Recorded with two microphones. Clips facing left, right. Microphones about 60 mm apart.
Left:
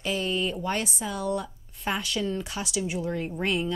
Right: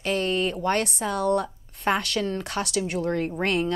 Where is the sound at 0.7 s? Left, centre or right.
Right.